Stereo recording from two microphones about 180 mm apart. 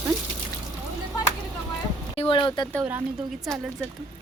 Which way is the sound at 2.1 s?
30° left (ahead or behind).